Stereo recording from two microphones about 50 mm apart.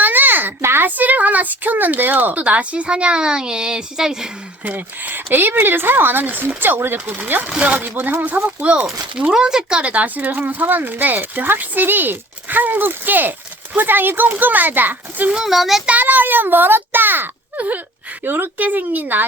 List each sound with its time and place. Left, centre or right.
0.0 s a sound: right
0.9 s a woman's voice: right
2.4 s a woman's voice: right; by 4.3 s centre
4.6 s speech: right
7.4 s speech: right
9.3 s a woman's voice: centre
9.8 s speech: right
15.3 s a woman's voice: centre
15.9 s speech: right